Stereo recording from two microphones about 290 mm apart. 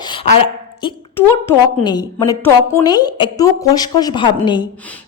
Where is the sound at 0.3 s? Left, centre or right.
Centre.